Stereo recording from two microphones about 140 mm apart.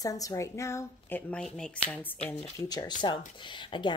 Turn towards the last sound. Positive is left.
turn(degrees=35)  # may be behind; listen again after turning